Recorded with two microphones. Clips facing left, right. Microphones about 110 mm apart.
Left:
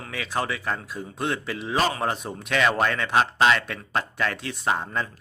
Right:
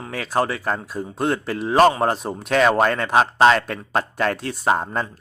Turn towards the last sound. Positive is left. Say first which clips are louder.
# right 5 dB
turn(degrees=-40)  # may be behind; listen again after turning